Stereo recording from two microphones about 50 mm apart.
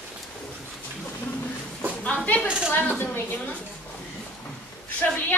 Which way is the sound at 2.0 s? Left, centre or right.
Left.